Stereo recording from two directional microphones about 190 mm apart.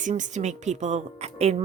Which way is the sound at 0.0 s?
40° right (ahead or behind).